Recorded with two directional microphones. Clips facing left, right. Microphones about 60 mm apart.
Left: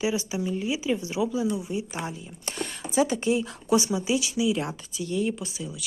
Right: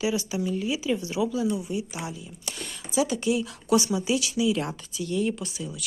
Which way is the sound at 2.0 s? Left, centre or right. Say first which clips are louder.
Left 2 dB; left.